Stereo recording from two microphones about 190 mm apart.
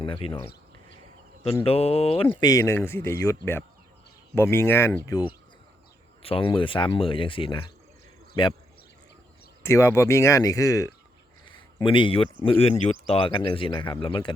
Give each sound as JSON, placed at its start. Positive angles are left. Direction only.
{"t": 0.0, "sound": "speech", "side_deg": 30}
{"t": 1.6, "sound": "speech", "side_deg": 30}
{"t": 2.5, "sound": "speech", "side_deg": 15}
{"t": 9.6, "sound": "speech", "side_deg": 15}